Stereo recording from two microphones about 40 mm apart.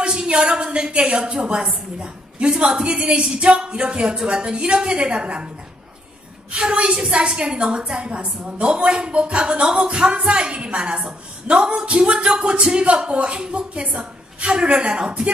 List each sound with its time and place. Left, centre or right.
0.0 s a woman's voice: right
6.5 s a woman's voice: right